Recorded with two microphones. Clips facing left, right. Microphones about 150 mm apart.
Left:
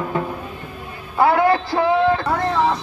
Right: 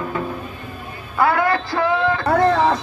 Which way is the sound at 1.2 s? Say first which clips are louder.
Left 2 dB; 15° left (ahead or behind).